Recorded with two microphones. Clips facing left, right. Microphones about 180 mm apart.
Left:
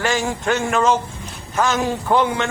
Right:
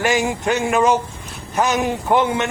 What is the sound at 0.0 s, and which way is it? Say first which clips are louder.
Speech: right 2 dB; 20° right (ahead or behind).